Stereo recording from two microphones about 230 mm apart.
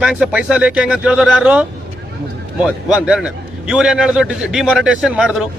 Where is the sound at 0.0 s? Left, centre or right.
Centre.